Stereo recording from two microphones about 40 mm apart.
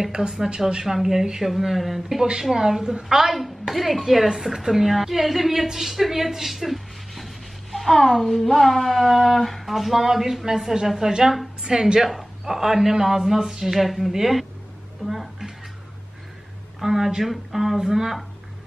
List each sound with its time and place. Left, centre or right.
0.1 s a man's voice: centre
15.0 s a sound: centre
16.8 s a man's voice: centre